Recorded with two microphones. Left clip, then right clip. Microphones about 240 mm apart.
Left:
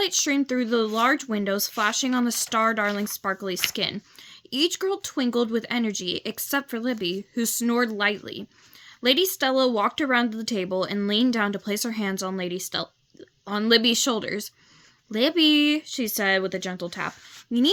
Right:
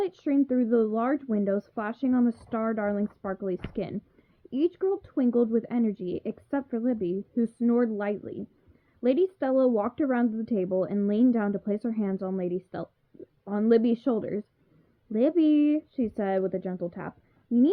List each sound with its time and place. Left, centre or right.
0.0 s speech: centre